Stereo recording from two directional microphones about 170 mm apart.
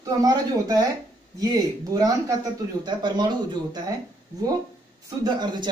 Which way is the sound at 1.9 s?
20° right (ahead or behind).